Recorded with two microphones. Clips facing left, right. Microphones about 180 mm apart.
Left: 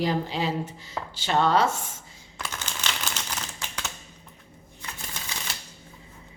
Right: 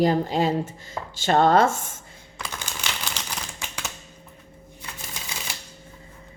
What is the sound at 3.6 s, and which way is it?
Typewriter, 10° right (ahead or behind).